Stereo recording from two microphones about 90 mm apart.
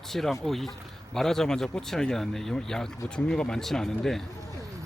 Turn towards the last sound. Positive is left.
turn(degrees=5)  # may be behind; listen again after turning